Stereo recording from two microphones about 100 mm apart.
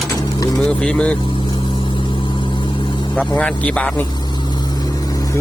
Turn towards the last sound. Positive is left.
turn(degrees=15)  # may be behind; listen again after turning